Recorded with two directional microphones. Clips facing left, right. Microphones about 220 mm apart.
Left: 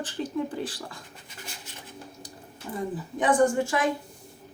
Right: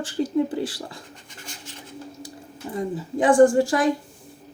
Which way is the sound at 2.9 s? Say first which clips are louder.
Right 7 dB; 30° right (ahead or behind).